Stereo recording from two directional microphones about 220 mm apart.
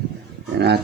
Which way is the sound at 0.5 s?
50° right (ahead or behind).